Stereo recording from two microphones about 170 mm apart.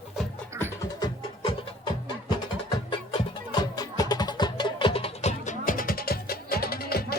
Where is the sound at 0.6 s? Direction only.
25° left (ahead or behind).